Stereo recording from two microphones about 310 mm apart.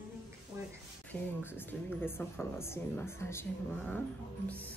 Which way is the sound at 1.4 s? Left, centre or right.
Centre.